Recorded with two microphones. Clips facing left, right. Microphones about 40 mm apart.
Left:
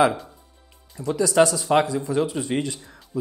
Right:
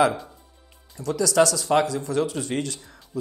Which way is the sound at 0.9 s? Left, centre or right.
Left.